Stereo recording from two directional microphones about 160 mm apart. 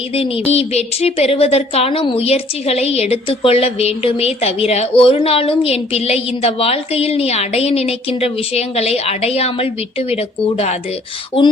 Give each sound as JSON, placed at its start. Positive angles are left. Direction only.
{"t": 0.1, "sound": "speech", "side_deg": 40}